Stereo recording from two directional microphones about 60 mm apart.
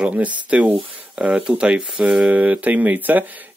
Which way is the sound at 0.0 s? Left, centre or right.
Right.